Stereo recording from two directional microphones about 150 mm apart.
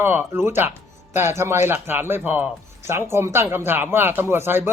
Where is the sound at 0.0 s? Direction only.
15° right (ahead or behind).